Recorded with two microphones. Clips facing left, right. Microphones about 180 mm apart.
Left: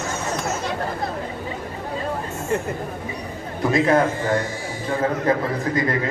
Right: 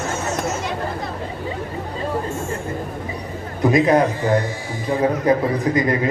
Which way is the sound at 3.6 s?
15° right (ahead or behind).